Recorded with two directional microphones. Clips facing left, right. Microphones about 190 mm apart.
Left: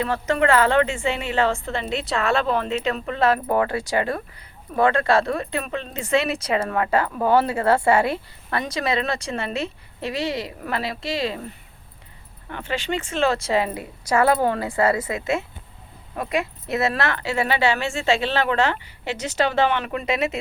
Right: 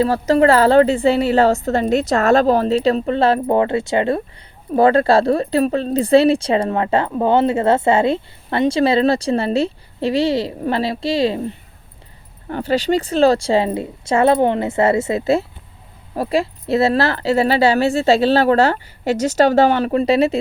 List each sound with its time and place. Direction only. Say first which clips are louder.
0.0 s a woman's voice: right 7 dB; 35° right (ahead or behind)